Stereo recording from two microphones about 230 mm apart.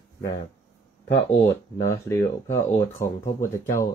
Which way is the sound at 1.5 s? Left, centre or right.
Centre.